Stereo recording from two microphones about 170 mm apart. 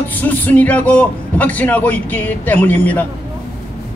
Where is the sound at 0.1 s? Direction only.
10° left (ahead or behind).